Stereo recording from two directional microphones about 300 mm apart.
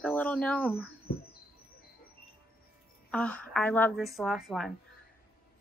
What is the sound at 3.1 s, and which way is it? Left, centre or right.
A woman's voice, centre.